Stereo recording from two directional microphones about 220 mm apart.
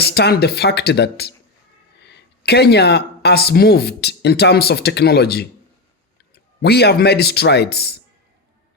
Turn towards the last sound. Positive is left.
turn(degrees=45)  # may be behind; listen again after turning